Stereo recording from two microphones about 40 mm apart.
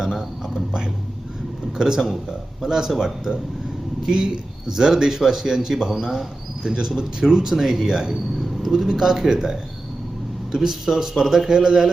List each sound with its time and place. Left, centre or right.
0.0 s whispering: centre
1.8 s a man's voice: centre
4.0 s a man's voice: centre